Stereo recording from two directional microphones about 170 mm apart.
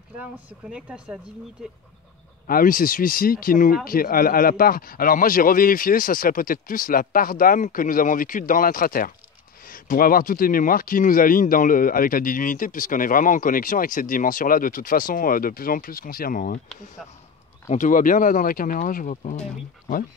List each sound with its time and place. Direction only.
0.7 s speech: 5° right (ahead or behind)
2.4 s speech: 55° left (ahead or behind)
17.6 s speech: 50° left (ahead or behind)